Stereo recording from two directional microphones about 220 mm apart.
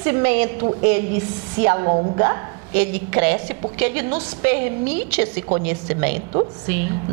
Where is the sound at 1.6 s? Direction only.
25° right (ahead or behind).